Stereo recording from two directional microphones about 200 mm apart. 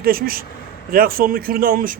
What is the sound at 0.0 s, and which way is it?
Speech, 50° right (ahead or behind).